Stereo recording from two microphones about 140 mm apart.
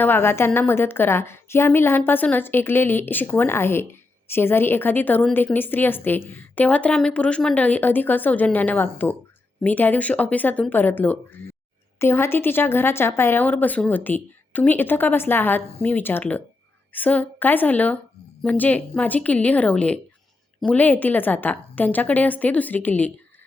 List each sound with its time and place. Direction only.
0.0 s a woman's voice: 15° left (ahead or behind)